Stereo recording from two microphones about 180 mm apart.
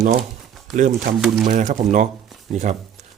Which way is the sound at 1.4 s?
45° right (ahead or behind).